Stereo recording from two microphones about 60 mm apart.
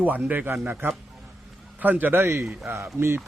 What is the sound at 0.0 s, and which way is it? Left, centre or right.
Speech, right.